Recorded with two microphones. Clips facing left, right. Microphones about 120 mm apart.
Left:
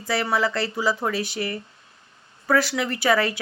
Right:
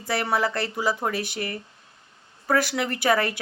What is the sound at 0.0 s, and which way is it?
A woman's voice, 55° right (ahead or behind).